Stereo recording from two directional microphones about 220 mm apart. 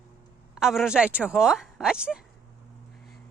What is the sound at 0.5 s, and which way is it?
Speech, centre (ahead or behind).